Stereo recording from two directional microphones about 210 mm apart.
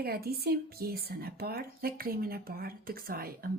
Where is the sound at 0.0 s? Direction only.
45° right (ahead or behind).